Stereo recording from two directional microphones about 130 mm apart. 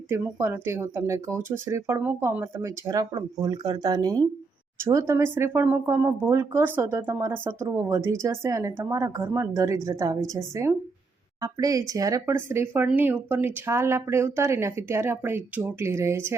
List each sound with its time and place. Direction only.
0.1 s speech: 20° right (ahead or behind)